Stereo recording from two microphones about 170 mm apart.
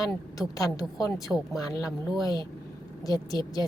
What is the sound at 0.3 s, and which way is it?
Speech, 20° left (ahead or behind).